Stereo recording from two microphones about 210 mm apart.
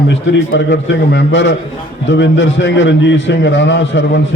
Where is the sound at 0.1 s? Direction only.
60° left (ahead or behind).